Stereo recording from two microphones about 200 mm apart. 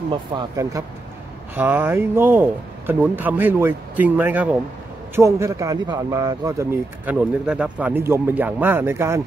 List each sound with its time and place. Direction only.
0.1 s speech: 25° right (ahead or behind)